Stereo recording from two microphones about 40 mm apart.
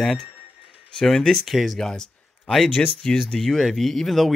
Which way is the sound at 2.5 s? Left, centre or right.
Centre.